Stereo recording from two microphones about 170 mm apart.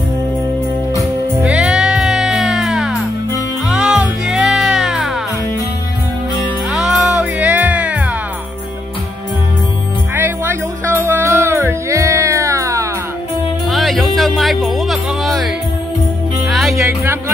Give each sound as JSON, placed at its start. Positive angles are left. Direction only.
{"t": 1.4, "sound": "music", "side_deg": -5}
{"t": 6.7, "sound": "music", "side_deg": 0}
{"t": 10.1, "sound": "music", "side_deg": -15}
{"t": 13.7, "sound": "music", "side_deg": 0}
{"t": 16.7, "sound": "music", "side_deg": -15}